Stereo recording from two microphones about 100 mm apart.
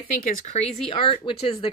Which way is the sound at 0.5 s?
60° left (ahead or behind).